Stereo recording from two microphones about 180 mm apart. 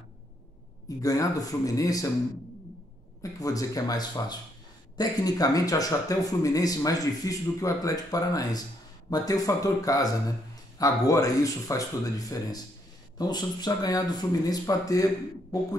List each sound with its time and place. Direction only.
0.8 s speech: 20° left (ahead or behind)
3.2 s speech: 20° left (ahead or behind)